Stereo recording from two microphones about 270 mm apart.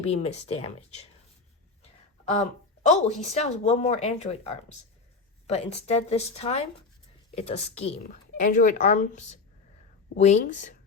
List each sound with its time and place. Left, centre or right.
0.0 s a woman's voice: left
2.8 s a woman's voice: left